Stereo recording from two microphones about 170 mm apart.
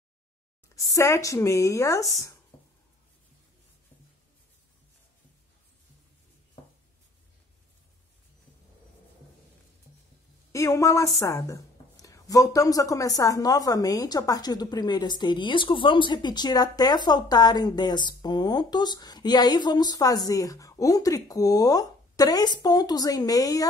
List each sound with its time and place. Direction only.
0.9 s speech: 15° left (ahead or behind)
10.5 s a woman's voice: 15° left (ahead or behind)